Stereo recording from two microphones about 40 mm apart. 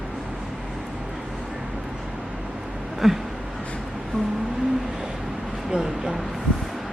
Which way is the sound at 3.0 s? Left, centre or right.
Centre.